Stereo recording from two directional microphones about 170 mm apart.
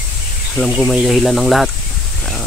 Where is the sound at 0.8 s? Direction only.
Centre (ahead or behind).